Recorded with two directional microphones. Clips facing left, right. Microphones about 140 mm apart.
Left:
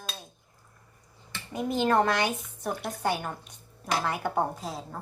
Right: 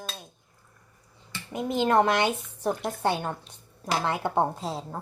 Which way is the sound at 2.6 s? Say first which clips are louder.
Right 3 dB; 30° right (ahead or behind).